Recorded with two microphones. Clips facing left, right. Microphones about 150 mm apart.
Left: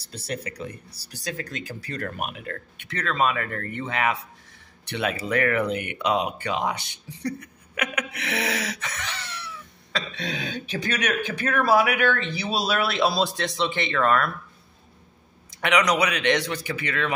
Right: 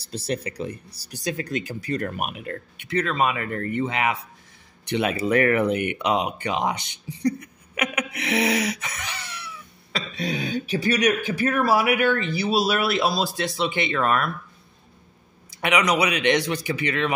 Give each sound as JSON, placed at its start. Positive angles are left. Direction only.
{"t": 0.3, "sound": "speech", "side_deg": -25}
{"t": 15.5, "sound": "speech", "side_deg": -10}